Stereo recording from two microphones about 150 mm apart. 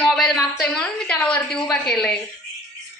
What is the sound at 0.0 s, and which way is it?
A woman's voice, 5° left (ahead or behind).